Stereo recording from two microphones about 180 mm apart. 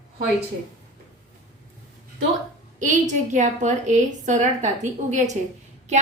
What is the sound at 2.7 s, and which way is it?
Speech, 45° right (ahead or behind).